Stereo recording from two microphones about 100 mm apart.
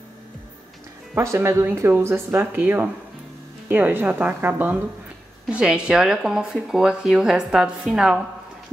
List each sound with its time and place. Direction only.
1.1 s speech: 25° right (ahead or behind); by 8.2 s 5° right (ahead or behind)